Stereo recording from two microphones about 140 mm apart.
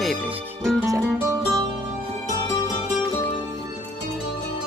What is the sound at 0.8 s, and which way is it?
Music, 20° right (ahead or behind).